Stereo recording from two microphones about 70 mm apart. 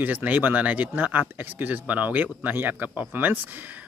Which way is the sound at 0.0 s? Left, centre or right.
Right.